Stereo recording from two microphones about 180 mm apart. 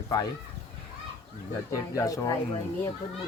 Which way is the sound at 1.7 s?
20° left (ahead or behind).